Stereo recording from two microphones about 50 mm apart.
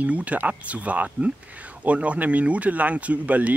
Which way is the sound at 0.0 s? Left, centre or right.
Right.